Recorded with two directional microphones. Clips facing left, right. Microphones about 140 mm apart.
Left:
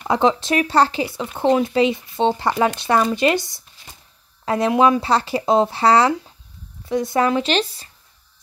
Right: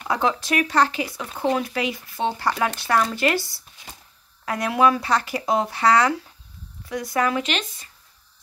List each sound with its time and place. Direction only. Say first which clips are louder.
0.1 s speech: left 5 dB; 25° left (ahead or behind)